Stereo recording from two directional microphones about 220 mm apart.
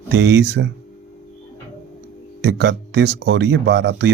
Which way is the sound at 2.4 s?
50° right (ahead or behind).